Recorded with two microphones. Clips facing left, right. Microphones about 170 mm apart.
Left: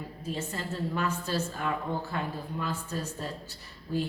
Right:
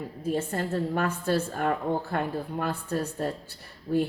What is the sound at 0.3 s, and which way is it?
A woman's voice, 55° right (ahead or behind).